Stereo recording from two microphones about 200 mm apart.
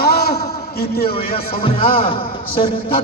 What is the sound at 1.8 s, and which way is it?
Speech, 25° left (ahead or behind).